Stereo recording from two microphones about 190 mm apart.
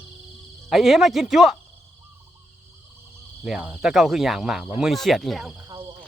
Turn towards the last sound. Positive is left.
turn(degrees=0)  # may be behind; listen again after turning